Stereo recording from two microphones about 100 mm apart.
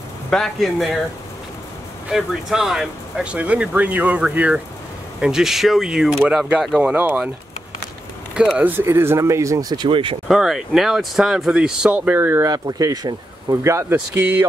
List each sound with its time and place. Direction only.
0.3 s speech: 5° left (ahead or behind)
2.0 s speech: 5° right (ahead or behind)
8.5 s speech: 15° right (ahead or behind); by 9.8 s 40° right (ahead or behind)
9.8 s speech: 60° right (ahead or behind)
10.2 s speech: 5° right (ahead or behind); by 12.4 s 20° right (ahead or behind)
12.4 s speech: 40° right (ahead or behind)
14.1 s speech: 15° right (ahead or behind)